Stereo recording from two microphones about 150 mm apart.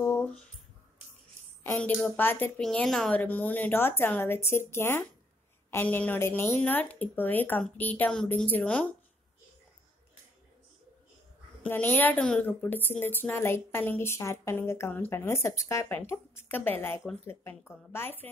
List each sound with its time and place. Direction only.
0.0 s a sound: 15° left (ahead or behind)
1.6 s a woman's voice: 15° left (ahead or behind)
11.6 s a woman's voice: 10° left (ahead or behind)